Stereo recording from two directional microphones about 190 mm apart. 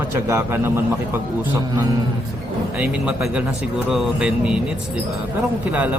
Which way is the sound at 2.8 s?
5° right (ahead or behind).